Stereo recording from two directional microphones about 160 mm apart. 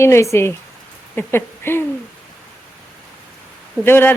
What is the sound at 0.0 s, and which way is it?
A man's voice, 15° left (ahead or behind).